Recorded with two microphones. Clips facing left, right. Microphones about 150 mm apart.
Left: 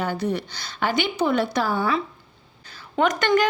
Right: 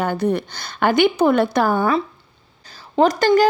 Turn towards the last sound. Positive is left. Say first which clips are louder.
# right 5 dB
turn(degrees=-35)  # may be behind; listen again after turning